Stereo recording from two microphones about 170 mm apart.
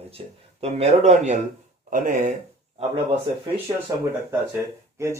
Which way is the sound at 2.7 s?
25° right (ahead or behind).